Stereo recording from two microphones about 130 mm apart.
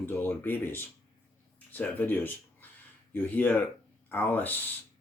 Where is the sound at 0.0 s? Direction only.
15° left (ahead or behind).